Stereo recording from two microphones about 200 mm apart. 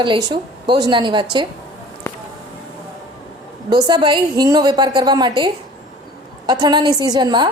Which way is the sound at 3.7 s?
20° right (ahead or behind).